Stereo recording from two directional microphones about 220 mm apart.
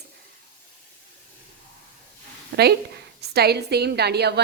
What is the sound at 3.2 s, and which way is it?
A woman's voice, 45° right (ahead or behind).